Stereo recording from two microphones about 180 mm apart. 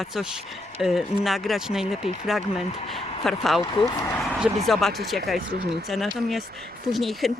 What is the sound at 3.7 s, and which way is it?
Speech, 20° left (ahead or behind).